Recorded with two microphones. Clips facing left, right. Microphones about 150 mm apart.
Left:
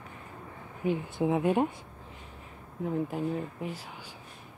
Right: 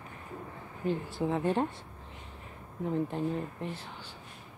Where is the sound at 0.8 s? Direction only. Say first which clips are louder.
Left 3 dB; 15° left (ahead or behind).